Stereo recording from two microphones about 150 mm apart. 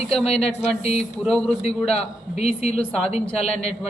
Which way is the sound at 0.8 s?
45° left (ahead or behind).